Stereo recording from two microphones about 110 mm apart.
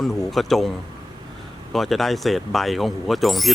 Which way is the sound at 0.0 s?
Centre (ahead or behind).